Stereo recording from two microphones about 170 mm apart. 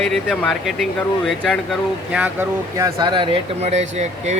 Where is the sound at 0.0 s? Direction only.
Centre (ahead or behind).